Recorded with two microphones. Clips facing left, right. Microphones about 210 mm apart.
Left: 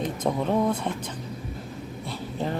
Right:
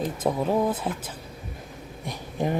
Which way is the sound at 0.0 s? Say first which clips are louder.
Right 1 dB; 5° right (ahead or behind).